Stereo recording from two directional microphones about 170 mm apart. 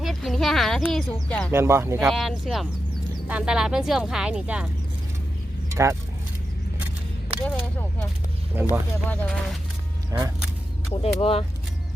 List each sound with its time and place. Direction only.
0.0 s speech: centre (ahead or behind)
1.5 s speech: 15° right (ahead or behind)
2.0 s speech: centre (ahead or behind)
5.7 s speech: 15° right (ahead or behind)
7.4 s a sound: 10° left (ahead or behind)
8.5 s speech: 10° right (ahead or behind)
9.0 s speech: 5° left (ahead or behind)
10.9 s speech: 35° left (ahead or behind)